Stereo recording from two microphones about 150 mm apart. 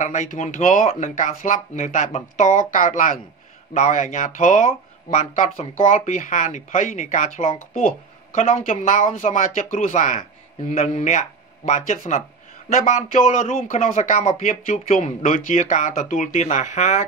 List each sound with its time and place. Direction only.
0.0 s speech: 55° left (ahead or behind)